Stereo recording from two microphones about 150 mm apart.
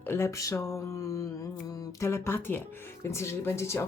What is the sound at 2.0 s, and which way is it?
Speech, 15° left (ahead or behind).